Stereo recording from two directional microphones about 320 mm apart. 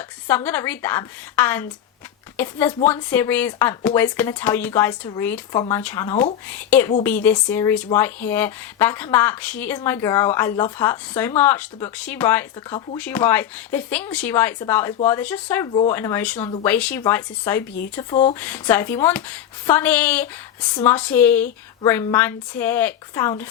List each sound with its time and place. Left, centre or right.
0.3 s a woman's voice: centre
18.1 s speech: centre
18.3 s a woman's voice: centre